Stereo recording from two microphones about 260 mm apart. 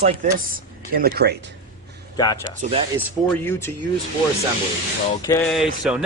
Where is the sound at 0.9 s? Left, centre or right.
Right.